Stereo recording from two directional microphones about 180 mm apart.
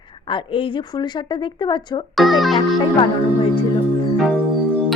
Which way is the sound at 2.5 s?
25° left (ahead or behind).